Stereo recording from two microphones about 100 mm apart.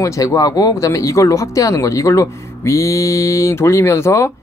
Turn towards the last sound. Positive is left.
turn(degrees=25)  # may be behind; listen again after turning